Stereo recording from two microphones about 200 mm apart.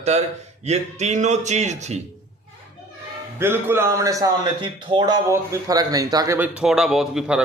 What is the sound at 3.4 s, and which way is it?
A man's voice, 10° right (ahead or behind).